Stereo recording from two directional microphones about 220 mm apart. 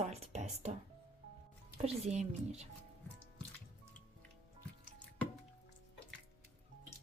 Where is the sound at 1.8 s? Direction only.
30° right (ahead or behind).